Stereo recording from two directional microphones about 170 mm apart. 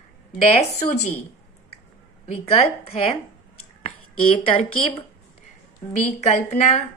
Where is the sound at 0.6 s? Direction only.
45° left (ahead or behind).